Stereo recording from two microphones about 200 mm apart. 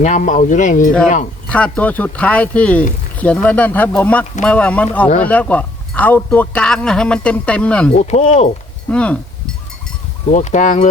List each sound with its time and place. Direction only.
0.0 s speech: 40° left (ahead or behind)
1.5 s a man's voice: 5° left (ahead or behind)
7.9 s speech: 35° left (ahead or behind)
8.9 s a man's voice: 5° left (ahead or behind)
10.2 s speech: 35° left (ahead or behind)